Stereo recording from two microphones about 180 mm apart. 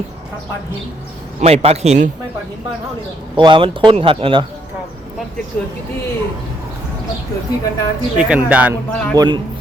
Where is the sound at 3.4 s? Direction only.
25° right (ahead or behind).